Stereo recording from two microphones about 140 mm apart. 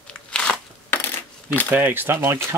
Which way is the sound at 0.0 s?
5° left (ahead or behind).